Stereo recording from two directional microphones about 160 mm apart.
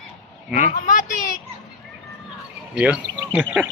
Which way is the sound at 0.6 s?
55° left (ahead or behind).